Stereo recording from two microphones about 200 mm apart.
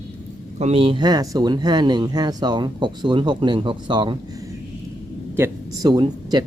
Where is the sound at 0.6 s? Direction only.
30° right (ahead or behind).